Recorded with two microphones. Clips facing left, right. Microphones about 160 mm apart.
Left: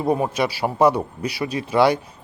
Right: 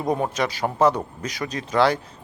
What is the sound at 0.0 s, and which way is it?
Speech, 10° left (ahead or behind).